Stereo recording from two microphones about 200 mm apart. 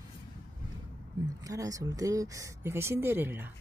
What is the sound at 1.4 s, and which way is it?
Speech, 15° right (ahead or behind).